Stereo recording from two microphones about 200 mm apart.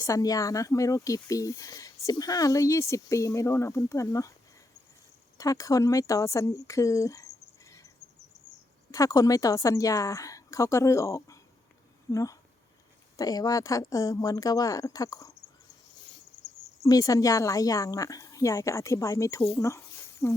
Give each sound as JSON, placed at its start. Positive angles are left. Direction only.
{"t": 0.0, "sound": "speech", "side_deg": 15}
{"t": 5.4, "sound": "speech", "side_deg": 15}
{"t": 8.9, "sound": "speech", "side_deg": 15}
{"t": 16.8, "sound": "speech", "side_deg": 15}